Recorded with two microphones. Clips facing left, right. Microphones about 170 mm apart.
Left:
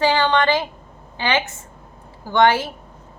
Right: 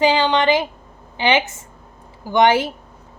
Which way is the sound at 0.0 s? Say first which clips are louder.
Right 1 dB; 15° right (ahead or behind).